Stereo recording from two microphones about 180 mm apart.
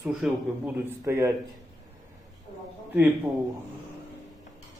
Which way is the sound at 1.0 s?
15° right (ahead or behind).